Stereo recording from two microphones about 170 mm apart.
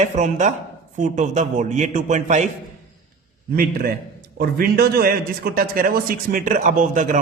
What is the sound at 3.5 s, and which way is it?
A man's voice, 60° right (ahead or behind).